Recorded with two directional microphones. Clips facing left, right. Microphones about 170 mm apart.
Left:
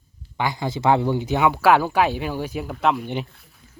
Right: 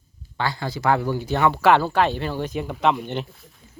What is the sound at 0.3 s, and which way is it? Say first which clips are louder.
Speech: left 2 dB; 15° left (ahead or behind).